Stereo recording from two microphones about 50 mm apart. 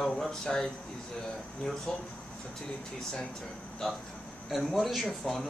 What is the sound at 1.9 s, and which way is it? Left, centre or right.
Speech, centre.